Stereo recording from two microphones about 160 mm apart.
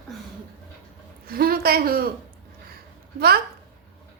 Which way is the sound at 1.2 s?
70° right (ahead or behind).